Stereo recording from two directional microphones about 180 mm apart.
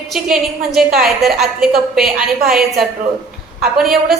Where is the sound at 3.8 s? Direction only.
Centre (ahead or behind).